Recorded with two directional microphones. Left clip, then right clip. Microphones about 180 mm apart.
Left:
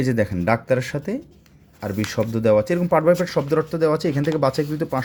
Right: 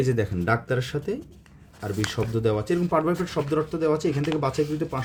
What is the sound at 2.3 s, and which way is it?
Speech, 40° left (ahead or behind).